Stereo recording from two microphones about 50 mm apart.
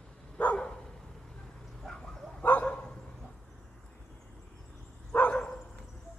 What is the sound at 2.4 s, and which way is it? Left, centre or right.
Dog, left.